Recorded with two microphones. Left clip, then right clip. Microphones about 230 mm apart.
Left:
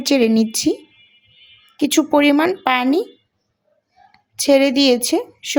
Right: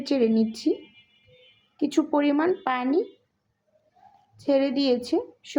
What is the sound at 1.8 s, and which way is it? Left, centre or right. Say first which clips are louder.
Speech: left 8 dB; left.